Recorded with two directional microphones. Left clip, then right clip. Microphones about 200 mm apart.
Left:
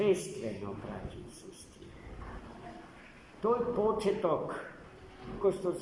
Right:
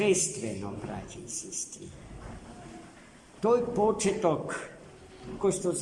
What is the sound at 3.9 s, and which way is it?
A man's voice, 45° right (ahead or behind).